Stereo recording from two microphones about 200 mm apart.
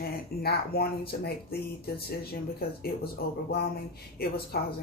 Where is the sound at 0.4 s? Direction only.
50° left (ahead or behind).